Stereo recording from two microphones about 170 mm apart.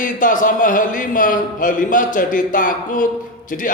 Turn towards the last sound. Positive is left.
turn(degrees=55)  # may be behind; listen again after turning